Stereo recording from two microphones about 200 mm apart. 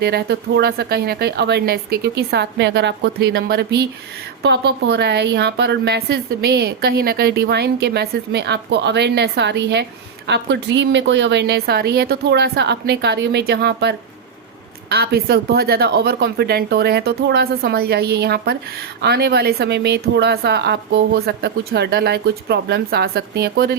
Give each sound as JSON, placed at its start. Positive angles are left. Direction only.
{"t": 0.0, "sound": "a woman's voice", "side_deg": -55}